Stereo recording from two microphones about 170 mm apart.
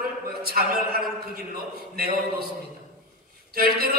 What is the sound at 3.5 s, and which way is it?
Speech, 60° right (ahead or behind).